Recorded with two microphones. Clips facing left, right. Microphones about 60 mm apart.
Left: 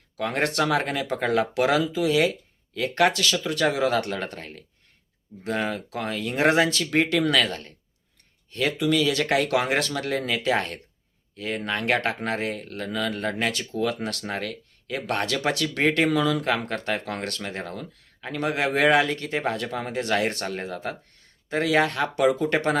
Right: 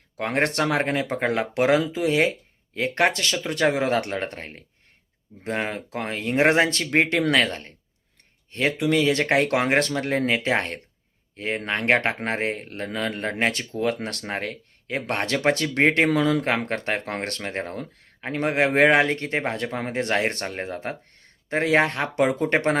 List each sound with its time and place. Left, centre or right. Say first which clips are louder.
0.2 s speech: right 1 dB; right